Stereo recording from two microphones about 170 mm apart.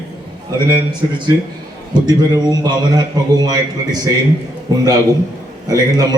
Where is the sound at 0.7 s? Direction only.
25° right (ahead or behind).